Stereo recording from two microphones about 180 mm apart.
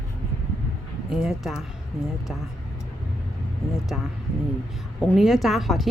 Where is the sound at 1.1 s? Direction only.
Centre (ahead or behind).